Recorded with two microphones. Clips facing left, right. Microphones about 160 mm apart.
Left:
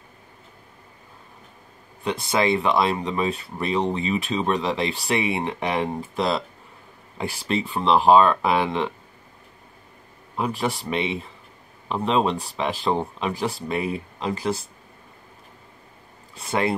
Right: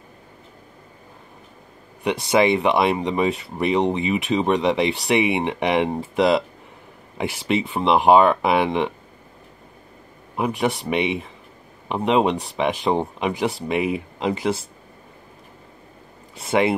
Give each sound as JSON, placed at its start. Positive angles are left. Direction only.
{"t": 2.0, "sound": "speech", "side_deg": -20}
{"t": 10.3, "sound": "speech", "side_deg": -15}
{"t": 16.4, "sound": "speech", "side_deg": -20}